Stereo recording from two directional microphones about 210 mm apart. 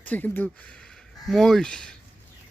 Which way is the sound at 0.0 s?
10° left (ahead or behind).